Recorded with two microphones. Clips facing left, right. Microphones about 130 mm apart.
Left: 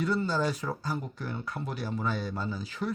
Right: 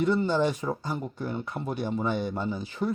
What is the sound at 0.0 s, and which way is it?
Speech, 25° right (ahead or behind).